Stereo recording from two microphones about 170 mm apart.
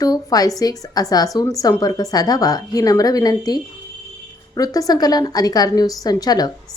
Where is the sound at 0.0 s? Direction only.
20° left (ahead or behind).